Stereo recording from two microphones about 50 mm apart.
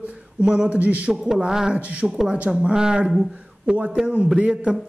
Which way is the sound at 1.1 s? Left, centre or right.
Centre.